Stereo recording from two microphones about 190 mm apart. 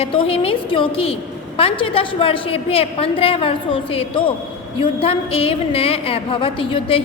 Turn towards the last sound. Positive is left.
turn(degrees=30)  # may be behind; listen again after turning